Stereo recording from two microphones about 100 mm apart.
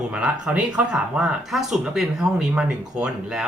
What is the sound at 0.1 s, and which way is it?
Speech, 10° right (ahead or behind).